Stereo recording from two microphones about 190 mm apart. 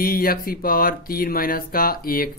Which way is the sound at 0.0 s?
50° left (ahead or behind).